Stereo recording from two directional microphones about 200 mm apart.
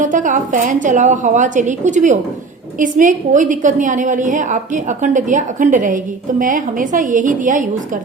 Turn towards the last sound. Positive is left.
turn(degrees=-40)  # may be behind; listen again after turning